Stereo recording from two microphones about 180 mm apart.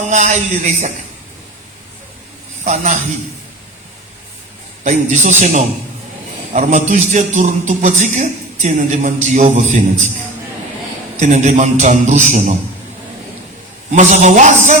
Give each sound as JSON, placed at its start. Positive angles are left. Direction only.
{"t": 0.1, "sound": "a man's voice", "side_deg": -40}
{"t": 2.6, "sound": "a man's voice", "side_deg": -40}
{"t": 4.8, "sound": "a man's voice", "side_deg": -40}
{"t": 11.2, "sound": "a man's voice", "side_deg": -40}
{"t": 13.9, "sound": "a man's voice", "side_deg": -40}